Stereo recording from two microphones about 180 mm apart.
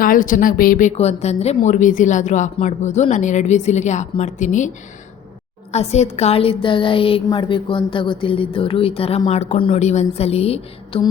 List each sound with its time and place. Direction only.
0.0 s speech: 50° left (ahead or behind)
5.7 s speech: 35° left (ahead or behind)